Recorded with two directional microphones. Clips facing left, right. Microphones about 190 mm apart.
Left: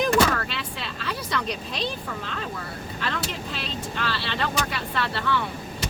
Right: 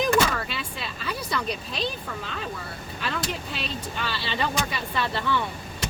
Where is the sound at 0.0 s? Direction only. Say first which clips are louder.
Left 1 dB; 10° right (ahead or behind).